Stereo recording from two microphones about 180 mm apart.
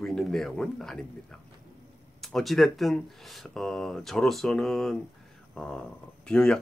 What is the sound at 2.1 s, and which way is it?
Speech, centre (ahead or behind).